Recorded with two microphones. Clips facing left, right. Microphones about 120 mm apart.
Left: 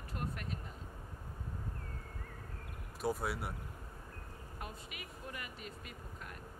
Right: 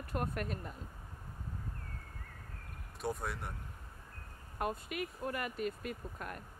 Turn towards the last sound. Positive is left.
turn(degrees=-50)  # may be behind; listen again after turning